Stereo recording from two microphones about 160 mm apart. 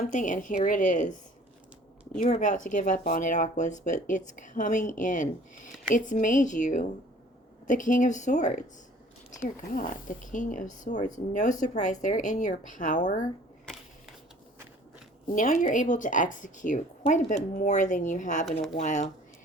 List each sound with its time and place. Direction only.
0.0 s a woman's voice: 55° left (ahead or behind)
2.1 s speech: 50° left (ahead or behind)
13.7 s camera: 5° left (ahead or behind)
15.3 s speech: 55° left (ahead or behind)